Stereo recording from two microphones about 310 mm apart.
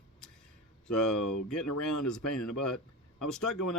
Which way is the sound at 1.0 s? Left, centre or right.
Left.